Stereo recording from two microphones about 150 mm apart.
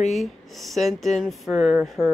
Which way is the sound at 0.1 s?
Centre (ahead or behind).